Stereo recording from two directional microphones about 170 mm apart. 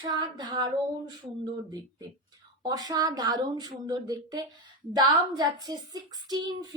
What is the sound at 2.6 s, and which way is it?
Speech, 20° right (ahead or behind).